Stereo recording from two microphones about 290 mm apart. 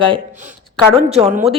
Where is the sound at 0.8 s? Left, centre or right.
Centre.